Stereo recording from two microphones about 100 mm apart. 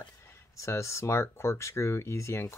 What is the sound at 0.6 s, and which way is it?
Speech, 30° left (ahead or behind).